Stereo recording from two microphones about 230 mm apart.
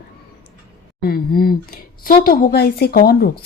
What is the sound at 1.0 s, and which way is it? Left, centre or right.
Speech, left.